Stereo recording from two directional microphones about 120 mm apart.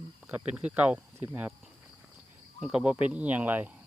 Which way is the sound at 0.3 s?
10° right (ahead or behind).